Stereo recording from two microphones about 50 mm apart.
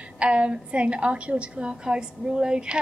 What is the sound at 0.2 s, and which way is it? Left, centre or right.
A woman's voice, right.